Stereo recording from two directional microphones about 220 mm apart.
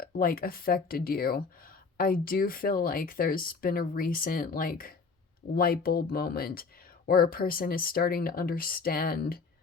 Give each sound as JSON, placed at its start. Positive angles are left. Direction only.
{"t": 0.0, "sound": "speech", "side_deg": 40}